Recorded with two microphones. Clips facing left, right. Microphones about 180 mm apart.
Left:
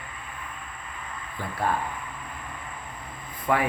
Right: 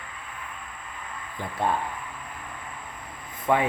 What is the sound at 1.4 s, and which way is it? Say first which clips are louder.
Speech: right 1 dB; 20° right (ahead or behind).